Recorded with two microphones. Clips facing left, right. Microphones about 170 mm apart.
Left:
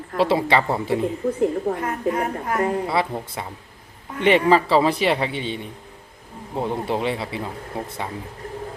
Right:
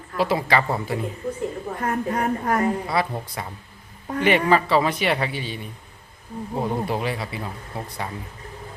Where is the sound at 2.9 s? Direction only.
25° left (ahead or behind).